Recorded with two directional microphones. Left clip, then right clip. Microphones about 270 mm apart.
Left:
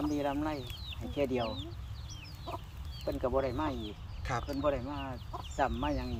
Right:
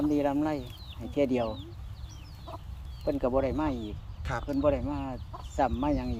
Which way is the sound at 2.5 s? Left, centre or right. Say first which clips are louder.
Left 2 dB; left.